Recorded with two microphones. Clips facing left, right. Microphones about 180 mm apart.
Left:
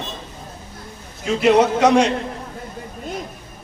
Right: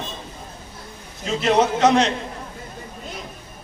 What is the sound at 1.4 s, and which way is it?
Speech, 10° left (ahead or behind).